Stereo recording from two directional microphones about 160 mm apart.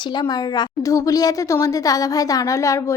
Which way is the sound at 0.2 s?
25° left (ahead or behind).